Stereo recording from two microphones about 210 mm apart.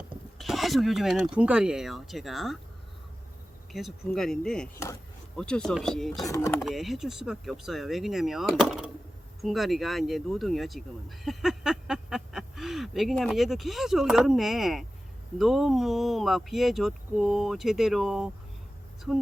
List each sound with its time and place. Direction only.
0.3 s speech: centre (ahead or behind)
3.7 s speech: centre (ahead or behind)
6.2 s speech: 15° left (ahead or behind)
6.7 s speech: centre (ahead or behind)